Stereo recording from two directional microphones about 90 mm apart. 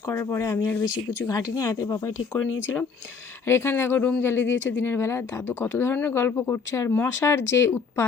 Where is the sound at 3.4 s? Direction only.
25° left (ahead or behind).